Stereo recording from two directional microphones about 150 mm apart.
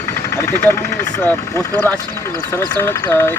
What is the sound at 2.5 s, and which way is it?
Speech, 20° left (ahead or behind).